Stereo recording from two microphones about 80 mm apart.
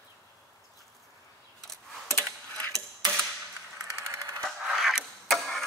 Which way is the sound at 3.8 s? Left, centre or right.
Right.